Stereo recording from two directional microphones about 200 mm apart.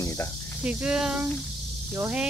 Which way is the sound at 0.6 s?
5° right (ahead or behind).